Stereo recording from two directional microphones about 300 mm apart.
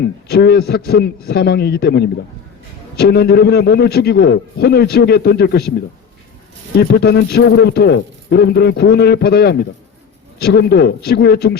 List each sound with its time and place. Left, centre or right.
0.3 s a man's voice: left
6.7 s a man's voice: left